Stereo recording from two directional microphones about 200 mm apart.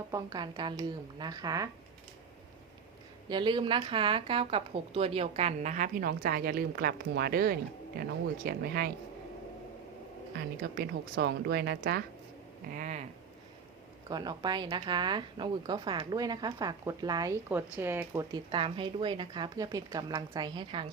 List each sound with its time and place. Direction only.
0.1 s speech: 20° right (ahead or behind)
3.2 s a woman's voice: 20° right (ahead or behind); by 8.9 s 50° right (ahead or behind)
10.3 s speech: 50° right (ahead or behind)
12.7 s a woman's voice: 40° right (ahead or behind)
14.1 s speech: 20° right (ahead or behind)